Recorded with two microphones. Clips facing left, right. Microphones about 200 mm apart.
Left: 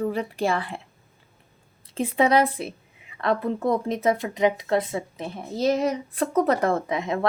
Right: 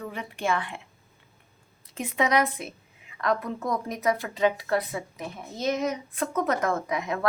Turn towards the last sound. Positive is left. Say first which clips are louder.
# left 3 dB
turn(degrees=25)  # may be behind; listen again after turning